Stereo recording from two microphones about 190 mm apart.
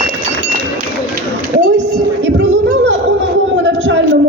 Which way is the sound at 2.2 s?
75° right (ahead or behind).